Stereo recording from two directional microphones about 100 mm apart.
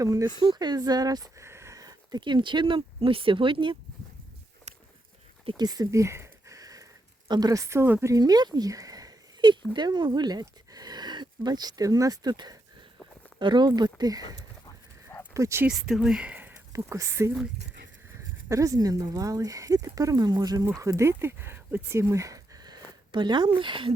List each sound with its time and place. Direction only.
0.0 s speech: 35° right (ahead or behind)
0.3 s speech: 45° right (ahead or behind)
4.7 s a sound: 90° right
5.5 s a sound: 40° right (ahead or behind)
7.3 s speech: 40° right (ahead or behind)
8.0 s speech: 40° right (ahead or behind)
15.3 s speech: 30° right (ahead or behind)
15.6 s speech: 5° right (ahead or behind)
16.7 s speech: 30° right (ahead or behind)
18.4 s speech: 30° right (ahead or behind); by 23.9 s 55° right (ahead or behind)